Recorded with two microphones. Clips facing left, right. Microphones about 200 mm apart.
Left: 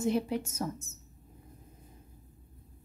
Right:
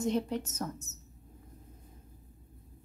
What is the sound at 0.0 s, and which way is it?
Speech, 10° left (ahead or behind).